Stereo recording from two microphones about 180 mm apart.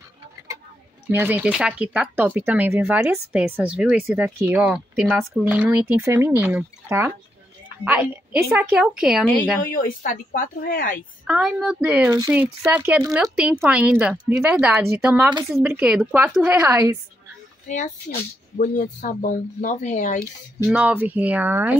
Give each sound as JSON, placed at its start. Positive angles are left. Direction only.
{"t": 1.1, "sound": "a woman's voice", "side_deg": -10}
{"t": 10.0, "sound": "speech", "side_deg": 50}
{"t": 11.2, "sound": "a woman's voice", "side_deg": -5}
{"t": 17.6, "sound": "speech", "side_deg": 40}
{"t": 20.6, "sound": "speech", "side_deg": -10}